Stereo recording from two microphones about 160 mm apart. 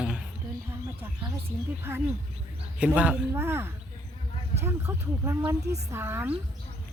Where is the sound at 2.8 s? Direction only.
10° right (ahead or behind).